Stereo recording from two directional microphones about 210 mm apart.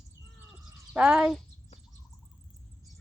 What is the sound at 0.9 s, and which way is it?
Speech, 5° right (ahead or behind).